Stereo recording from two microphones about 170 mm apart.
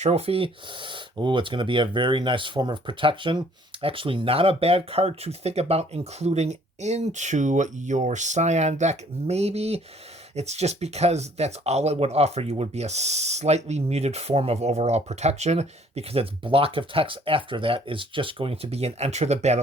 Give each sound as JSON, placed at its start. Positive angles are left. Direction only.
{"t": 0.0, "sound": "speech", "side_deg": -35}